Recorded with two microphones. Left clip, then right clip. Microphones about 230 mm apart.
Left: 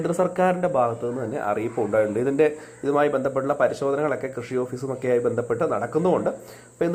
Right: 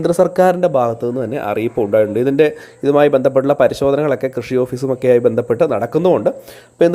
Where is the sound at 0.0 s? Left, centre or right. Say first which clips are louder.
Right 9 dB; right.